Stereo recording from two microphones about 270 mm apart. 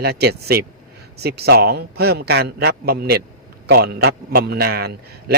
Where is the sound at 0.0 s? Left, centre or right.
Right.